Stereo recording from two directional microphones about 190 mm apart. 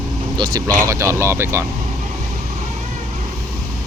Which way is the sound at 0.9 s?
15° right (ahead or behind).